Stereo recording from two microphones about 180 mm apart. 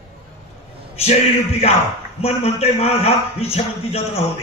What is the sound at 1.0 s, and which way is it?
A man's voice, 35° left (ahead or behind).